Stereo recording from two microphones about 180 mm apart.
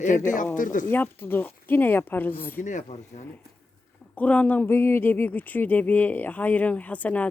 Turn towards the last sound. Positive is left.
turn(degrees=10)  # may be behind; listen again after turning